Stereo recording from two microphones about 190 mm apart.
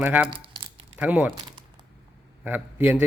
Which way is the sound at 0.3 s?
25° right (ahead or behind).